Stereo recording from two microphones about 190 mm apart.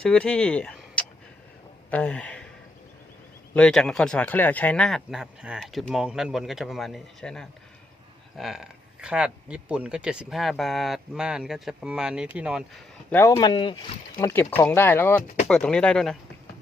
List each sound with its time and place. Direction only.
0.0 s speech: 5° left (ahead or behind)
3.5 s speech: 5° left (ahead or behind)
13.1 s speech: 15° left (ahead or behind)
14.2 s speech: 15° left (ahead or behind)